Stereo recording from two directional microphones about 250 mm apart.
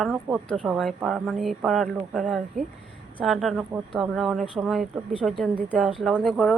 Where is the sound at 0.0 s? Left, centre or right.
Centre.